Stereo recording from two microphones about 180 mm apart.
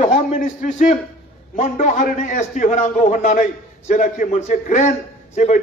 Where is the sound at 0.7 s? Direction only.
45° left (ahead or behind).